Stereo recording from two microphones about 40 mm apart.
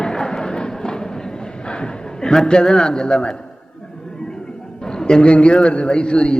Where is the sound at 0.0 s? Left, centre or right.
Centre.